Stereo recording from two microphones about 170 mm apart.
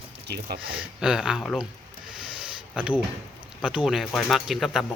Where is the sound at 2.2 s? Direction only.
5° right (ahead or behind).